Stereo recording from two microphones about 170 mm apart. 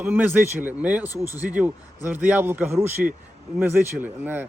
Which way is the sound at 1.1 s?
20° left (ahead or behind).